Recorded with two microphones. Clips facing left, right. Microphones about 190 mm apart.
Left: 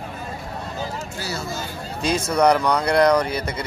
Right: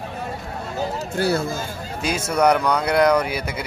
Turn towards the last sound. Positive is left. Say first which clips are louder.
# even
turn(degrees=-5)  # may be behind; listen again after turning